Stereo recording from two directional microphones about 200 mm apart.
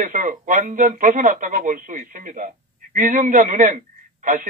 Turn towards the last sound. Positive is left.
turn(degrees=-40)  # may be behind; listen again after turning